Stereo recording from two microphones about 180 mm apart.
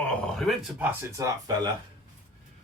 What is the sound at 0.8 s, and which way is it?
Speech, 15° right (ahead or behind).